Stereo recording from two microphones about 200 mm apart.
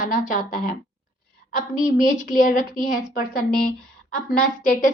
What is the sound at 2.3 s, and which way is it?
A woman's voice, 40° left (ahead or behind).